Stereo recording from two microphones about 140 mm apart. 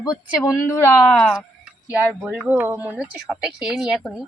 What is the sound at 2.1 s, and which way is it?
Speech, 5° right (ahead or behind).